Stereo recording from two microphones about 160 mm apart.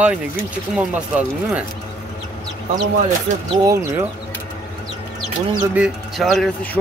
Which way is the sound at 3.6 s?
20° right (ahead or behind).